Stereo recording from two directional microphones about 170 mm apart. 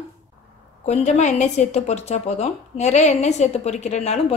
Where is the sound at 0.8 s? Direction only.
40° left (ahead or behind).